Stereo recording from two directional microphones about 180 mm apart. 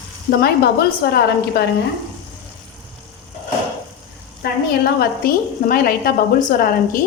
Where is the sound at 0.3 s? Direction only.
60° left (ahead or behind).